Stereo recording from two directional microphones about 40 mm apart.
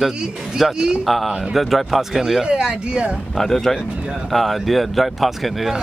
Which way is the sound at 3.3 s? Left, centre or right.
Centre.